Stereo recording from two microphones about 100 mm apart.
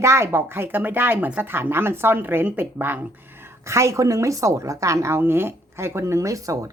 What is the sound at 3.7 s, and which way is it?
A woman's voice, 30° right (ahead or behind).